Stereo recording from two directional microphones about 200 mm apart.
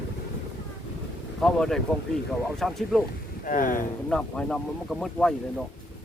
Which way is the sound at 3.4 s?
40° left (ahead or behind).